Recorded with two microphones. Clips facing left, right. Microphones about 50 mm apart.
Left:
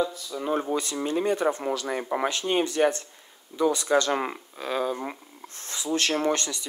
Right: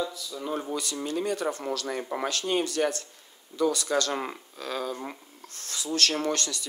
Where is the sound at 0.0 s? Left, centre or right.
Left.